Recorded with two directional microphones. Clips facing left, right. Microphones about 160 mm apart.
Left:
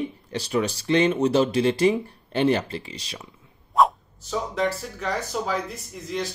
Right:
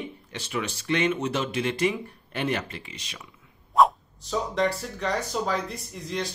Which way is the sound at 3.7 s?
Centre (ahead or behind).